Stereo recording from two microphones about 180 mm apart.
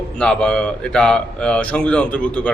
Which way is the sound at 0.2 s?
5° left (ahead or behind).